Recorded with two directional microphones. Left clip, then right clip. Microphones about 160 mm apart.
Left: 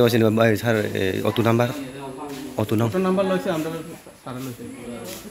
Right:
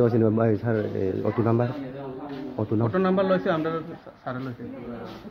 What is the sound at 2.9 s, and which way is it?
Speech, 10° right (ahead or behind).